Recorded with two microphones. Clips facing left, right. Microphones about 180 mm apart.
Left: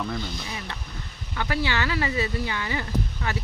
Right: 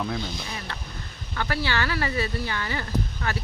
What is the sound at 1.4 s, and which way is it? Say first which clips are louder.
Speech: even; 20° left (ahead or behind).